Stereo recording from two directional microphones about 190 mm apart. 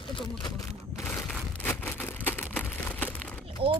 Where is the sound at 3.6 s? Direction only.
30° right (ahead or behind).